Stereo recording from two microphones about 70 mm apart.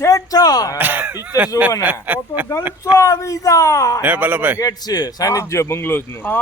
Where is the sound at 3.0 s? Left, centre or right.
Left.